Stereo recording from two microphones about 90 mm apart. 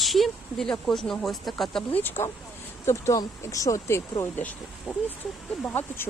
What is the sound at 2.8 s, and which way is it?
Speech, 35° left (ahead or behind).